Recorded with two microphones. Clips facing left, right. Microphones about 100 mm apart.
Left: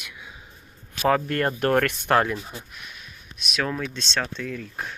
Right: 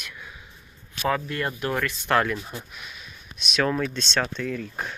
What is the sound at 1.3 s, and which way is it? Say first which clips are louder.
Speech: left 6 dB; 50° left (ahead or behind).